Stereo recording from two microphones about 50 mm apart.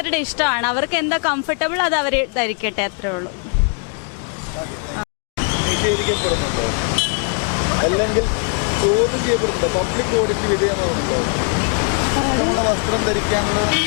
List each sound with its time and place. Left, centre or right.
0.0 s speech: left
4.9 s speech: left